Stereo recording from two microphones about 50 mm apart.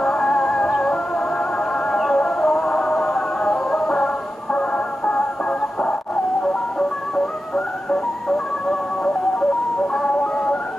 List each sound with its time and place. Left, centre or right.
0.0 s music: centre
7.5 s music: centre